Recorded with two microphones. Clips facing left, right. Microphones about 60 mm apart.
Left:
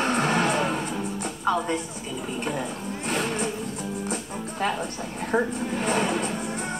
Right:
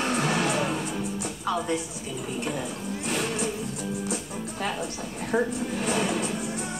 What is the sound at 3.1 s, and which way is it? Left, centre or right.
Vehicle, left.